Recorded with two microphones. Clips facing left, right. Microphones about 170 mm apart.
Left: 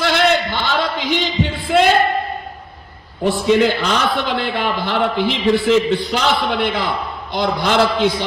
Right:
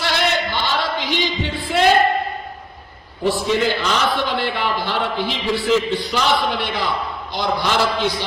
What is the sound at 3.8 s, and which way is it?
A man's voice, 55° left (ahead or behind).